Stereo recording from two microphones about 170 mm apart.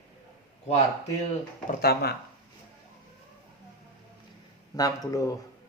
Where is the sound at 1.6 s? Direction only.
65° left (ahead or behind).